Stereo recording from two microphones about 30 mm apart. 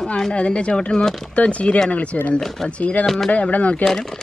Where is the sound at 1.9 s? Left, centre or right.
Left.